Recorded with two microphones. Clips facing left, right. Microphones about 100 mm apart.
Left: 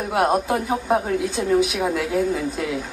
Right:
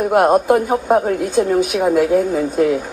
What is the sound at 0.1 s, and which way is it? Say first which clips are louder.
Speech: right 6 dB; 50° right (ahead or behind).